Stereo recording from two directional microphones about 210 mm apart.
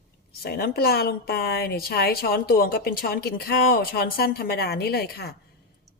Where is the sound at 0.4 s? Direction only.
45° left (ahead or behind).